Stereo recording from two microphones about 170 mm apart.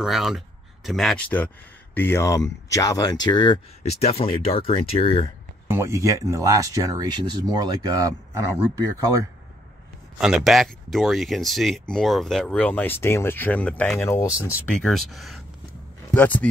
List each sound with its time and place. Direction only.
0.0 s speech: centre (ahead or behind); by 3.5 s 25° left (ahead or behind)
3.8 s speech: 35° left (ahead or behind)
5.7 s speech: 15° right (ahead or behind)
10.1 s speech: centre (ahead or behind); by 14.5 s 15° left (ahead or behind)
14.7 s speech: centre (ahead or behind)